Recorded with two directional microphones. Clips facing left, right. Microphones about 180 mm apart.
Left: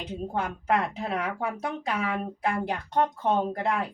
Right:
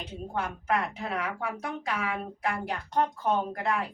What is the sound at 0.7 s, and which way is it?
A woman's voice, 30° left (ahead or behind).